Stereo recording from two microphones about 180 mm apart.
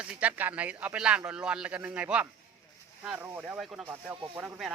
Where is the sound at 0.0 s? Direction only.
10° right (ahead or behind).